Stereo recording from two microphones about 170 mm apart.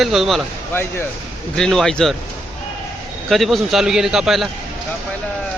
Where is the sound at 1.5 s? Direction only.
5° left (ahead or behind).